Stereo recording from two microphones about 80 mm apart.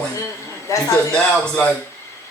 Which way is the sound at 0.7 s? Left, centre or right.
Left.